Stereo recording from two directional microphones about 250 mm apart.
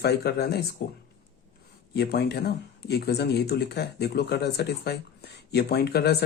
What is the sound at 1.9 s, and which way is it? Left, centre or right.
Speech, left.